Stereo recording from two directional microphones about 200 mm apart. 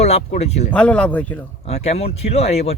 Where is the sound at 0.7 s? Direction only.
5° left (ahead or behind).